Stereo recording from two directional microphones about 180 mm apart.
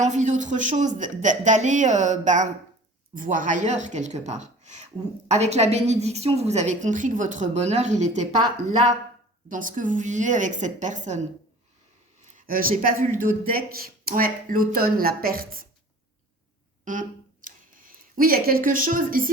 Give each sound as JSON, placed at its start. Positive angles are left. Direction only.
{"t": 0.0, "sound": "a woman's voice", "side_deg": -40}
{"t": 9.5, "sound": "speech", "side_deg": -45}
{"t": 12.4, "sound": "speech", "side_deg": -50}
{"t": 16.8, "sound": "a sound", "side_deg": -45}